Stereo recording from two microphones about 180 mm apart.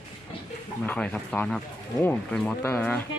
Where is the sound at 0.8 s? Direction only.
5° left (ahead or behind).